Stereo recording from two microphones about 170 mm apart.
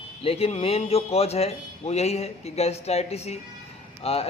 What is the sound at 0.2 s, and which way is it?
A man's voice, 35° left (ahead or behind).